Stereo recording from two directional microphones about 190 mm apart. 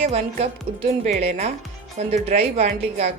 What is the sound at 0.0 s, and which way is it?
Speech, 35° right (ahead or behind).